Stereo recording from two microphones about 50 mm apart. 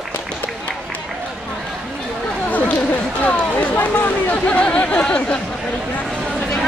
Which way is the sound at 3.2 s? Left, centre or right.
Left.